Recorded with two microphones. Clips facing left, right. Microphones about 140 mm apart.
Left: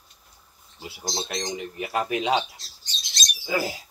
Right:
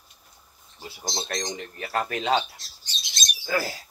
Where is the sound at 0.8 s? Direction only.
10° left (ahead or behind).